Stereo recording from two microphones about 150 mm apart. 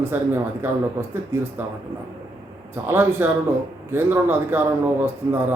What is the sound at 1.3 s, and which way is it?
Speech, 15° right (ahead or behind).